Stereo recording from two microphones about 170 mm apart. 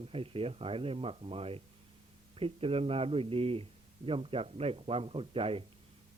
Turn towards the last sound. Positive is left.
turn(degrees=-35)  # may be behind; listen again after turning